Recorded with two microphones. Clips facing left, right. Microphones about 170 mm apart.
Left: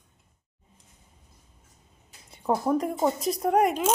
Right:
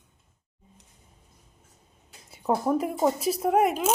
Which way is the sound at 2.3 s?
5° right (ahead or behind).